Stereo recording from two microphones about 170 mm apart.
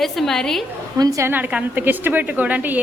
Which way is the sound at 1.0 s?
20° right (ahead or behind).